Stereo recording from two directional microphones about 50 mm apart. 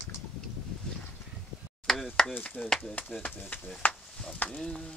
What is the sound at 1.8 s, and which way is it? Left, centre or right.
Knock, centre.